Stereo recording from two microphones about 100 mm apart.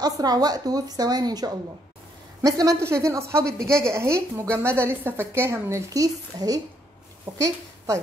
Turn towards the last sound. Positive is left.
turn(degrees=-35)  # may be behind; listen again after turning